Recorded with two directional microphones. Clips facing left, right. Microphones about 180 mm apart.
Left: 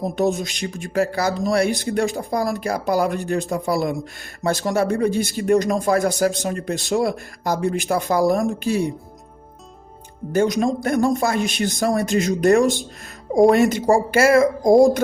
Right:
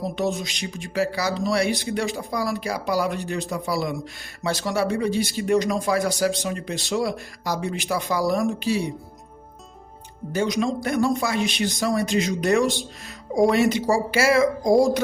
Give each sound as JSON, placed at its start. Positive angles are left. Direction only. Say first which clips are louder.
{"t": 0.0, "sound": "speech", "louder": "left 4 dB", "side_deg": 45}
{"t": 10.3, "sound": "speech", "louder": "left 4 dB", "side_deg": 50}